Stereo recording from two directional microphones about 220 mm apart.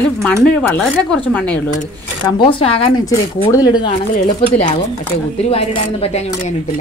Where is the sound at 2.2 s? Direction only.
25° left (ahead or behind).